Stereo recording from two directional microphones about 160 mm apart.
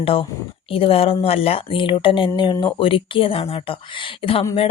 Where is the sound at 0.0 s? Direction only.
35° left (ahead or behind).